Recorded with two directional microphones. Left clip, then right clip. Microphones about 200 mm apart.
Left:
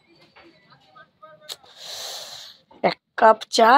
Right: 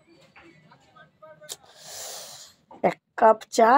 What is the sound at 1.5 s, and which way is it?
Wheeze, 5° right (ahead or behind).